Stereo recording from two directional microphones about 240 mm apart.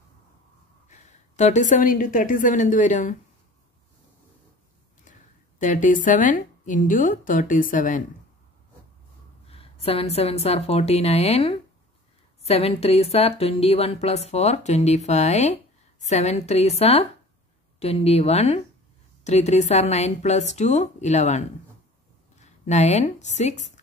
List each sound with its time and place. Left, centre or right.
0.8 s a woman's voice: left
5.6 s a woman's voice: left
9.5 s a woman's voice: left